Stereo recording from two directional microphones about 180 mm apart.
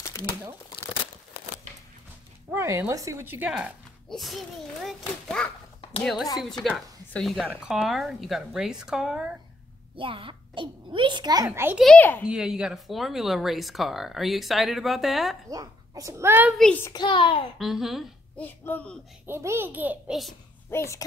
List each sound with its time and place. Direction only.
0.0 s crumpling: 20° left (ahead or behind)
2.5 s speech: 15° right (ahead or behind); by 5.5 s centre (ahead or behind)
7.1 s speech: 5° left (ahead or behind)
9.9 s a child's voice: 30° right (ahead or behind); by 11.8 s 10° right (ahead or behind)
11.8 s speech: 5° left (ahead or behind)
12.3 s speech: 5° right (ahead or behind)
15.5 s a child's voice: 20° right (ahead or behind)
16.5 s speech: 5° left (ahead or behind)
16.9 s a child's voice: 25° left (ahead or behind)
17.6 s speech: centre (ahead or behind)
18.4 s speech: 10° left (ahead or behind)
19.2 s a child's voice: 15° right (ahead or behind)
20.7 s speech: 15° left (ahead or behind)